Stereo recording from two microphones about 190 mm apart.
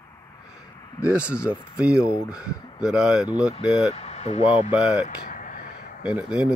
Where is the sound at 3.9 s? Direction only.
35° left (ahead or behind).